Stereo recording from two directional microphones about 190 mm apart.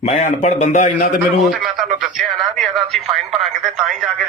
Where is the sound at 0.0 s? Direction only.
35° left (ahead or behind).